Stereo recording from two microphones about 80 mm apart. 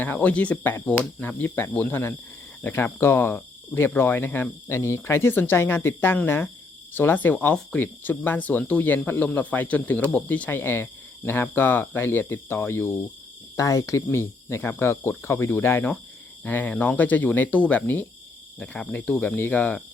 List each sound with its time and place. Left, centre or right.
0.0 s speech: centre
13.6 s speech: left; by 19.8 s centre